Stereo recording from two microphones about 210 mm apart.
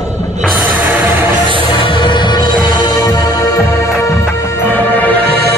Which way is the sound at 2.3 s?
40° right (ahead or behind).